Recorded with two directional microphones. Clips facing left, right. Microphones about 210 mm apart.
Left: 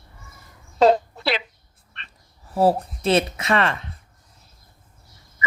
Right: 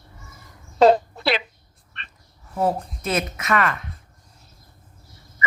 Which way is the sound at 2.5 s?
35° left (ahead or behind).